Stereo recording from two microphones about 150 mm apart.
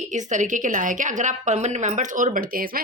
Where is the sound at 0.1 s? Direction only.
55° right (ahead or behind).